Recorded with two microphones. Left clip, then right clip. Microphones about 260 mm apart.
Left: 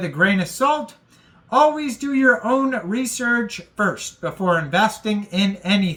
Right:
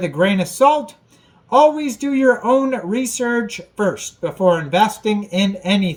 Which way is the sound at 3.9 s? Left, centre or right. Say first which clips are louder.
Right 3 dB; left.